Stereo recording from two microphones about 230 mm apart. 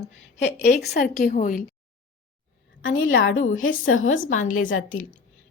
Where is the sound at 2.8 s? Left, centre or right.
Left.